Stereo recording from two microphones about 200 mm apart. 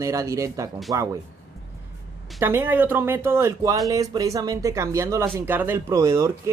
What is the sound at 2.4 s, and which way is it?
Speech, 10° right (ahead or behind).